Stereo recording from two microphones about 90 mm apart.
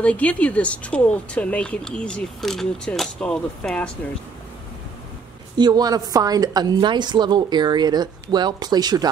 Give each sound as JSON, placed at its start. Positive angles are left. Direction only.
{"t": 0.0, "sound": "speech", "side_deg": 15}
{"t": 5.6, "sound": "a woman's voice", "side_deg": -50}